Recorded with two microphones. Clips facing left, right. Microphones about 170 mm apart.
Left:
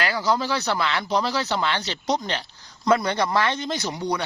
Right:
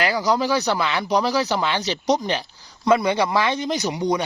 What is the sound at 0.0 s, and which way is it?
Speech, 20° right (ahead or behind).